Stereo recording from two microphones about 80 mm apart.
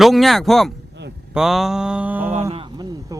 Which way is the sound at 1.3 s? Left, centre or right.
Centre.